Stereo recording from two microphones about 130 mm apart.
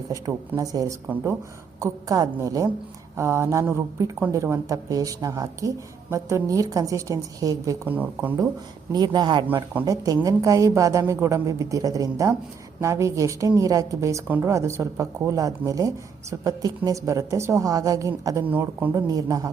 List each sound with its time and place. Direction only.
0.5 s speech: 30° right (ahead or behind)
1.8 s speech: 25° right (ahead or behind)
7.9 s speech: 15° right (ahead or behind)
8.9 s speech: 30° right (ahead or behind)
18.4 s speech: 15° right (ahead or behind)
18.9 s speech: 30° right (ahead or behind)